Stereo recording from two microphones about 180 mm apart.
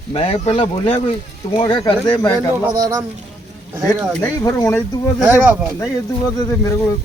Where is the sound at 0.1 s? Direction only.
30° left (ahead or behind).